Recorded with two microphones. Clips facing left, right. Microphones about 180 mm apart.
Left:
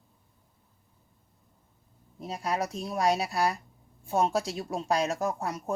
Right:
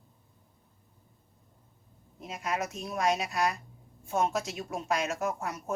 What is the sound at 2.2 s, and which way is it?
Speech, 35° left (ahead or behind).